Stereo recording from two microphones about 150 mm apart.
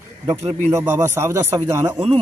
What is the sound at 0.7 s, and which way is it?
A man's voice, 15° right (ahead or behind).